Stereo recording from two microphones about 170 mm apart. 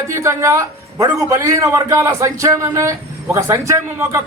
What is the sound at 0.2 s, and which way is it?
A man's voice, 15° right (ahead or behind).